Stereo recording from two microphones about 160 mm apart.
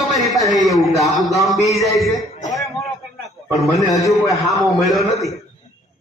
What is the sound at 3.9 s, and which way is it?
Speech, 20° left (ahead or behind).